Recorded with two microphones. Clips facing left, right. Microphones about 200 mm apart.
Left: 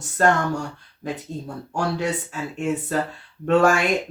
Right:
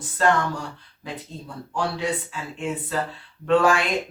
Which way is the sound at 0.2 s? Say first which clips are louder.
Left 2 dB; 50° left (ahead or behind).